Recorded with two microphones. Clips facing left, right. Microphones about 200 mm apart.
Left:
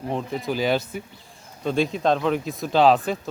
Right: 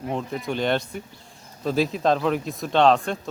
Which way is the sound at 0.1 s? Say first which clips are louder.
Left 1 dB; centre (ahead or behind).